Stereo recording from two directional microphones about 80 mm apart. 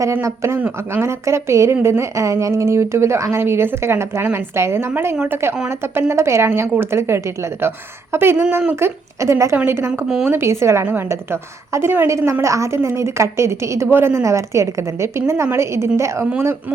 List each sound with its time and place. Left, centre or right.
0.0 s a woman's voice: right